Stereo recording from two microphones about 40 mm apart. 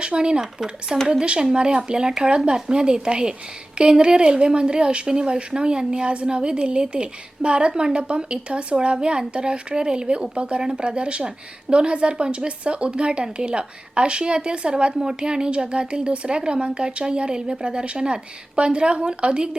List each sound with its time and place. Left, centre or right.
0.0 s speech: right